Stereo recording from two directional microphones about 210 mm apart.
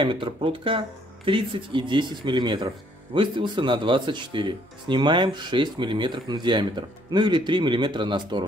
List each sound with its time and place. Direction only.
0.0 s speech: 25° right (ahead or behind)